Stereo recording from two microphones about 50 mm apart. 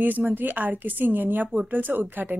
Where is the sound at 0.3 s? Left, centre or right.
Right.